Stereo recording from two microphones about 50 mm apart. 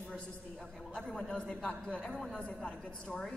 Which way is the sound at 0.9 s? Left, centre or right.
Centre.